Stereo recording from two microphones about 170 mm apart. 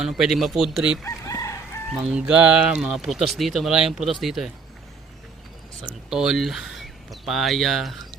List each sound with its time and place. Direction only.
0.0 s speech: 5° right (ahead or behind)
1.0 s chicken: 20° left (ahead or behind)
2.0 s speech: 5° right (ahead or behind)
5.8 s speech: 5° right (ahead or behind)